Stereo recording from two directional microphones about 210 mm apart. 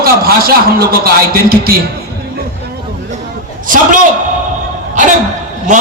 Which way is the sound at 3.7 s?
40° right (ahead or behind).